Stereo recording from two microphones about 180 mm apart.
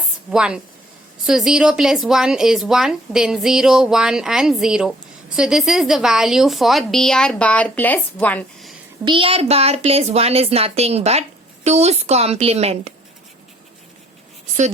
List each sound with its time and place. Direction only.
0.3 s speech: 5° right (ahead or behind)
9.0 s a woman's voice: 30° right (ahead or behind)